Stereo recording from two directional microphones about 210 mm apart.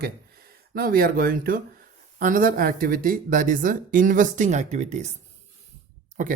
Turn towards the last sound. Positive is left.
turn(degrees=-40)  # may be behind; listen again after turning